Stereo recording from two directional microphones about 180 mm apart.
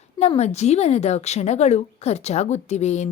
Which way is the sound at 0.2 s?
35° left (ahead or behind).